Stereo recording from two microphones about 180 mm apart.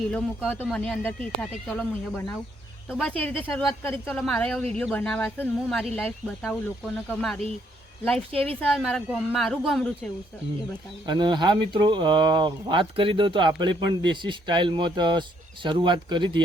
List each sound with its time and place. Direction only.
0.1 s speech: 5° left (ahead or behind)
8.3 s a woman's voice: 35° right (ahead or behind)
8.6 s a woman's voice: centre (ahead or behind)
11.0 s speech: 25° right (ahead or behind)